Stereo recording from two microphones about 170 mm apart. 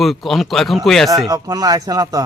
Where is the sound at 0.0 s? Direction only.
Centre (ahead or behind).